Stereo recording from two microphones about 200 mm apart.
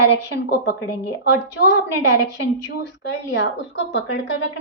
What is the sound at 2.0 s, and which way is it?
A woman's voice, 60° left (ahead or behind).